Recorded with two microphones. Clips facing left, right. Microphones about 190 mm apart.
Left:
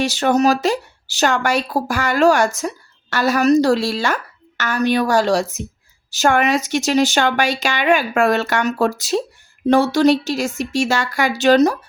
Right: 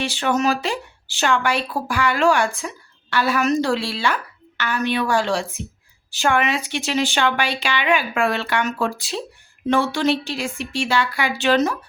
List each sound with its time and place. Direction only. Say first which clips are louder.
0.0 s speech: left 5 dB; 40° left (ahead or behind)